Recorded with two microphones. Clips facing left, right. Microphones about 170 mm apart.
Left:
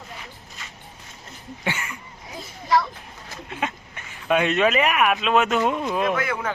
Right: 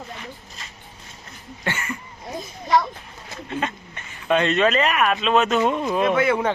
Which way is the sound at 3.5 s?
5° left (ahead or behind).